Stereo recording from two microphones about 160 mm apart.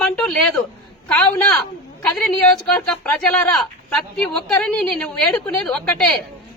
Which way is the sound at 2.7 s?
5° left (ahead or behind).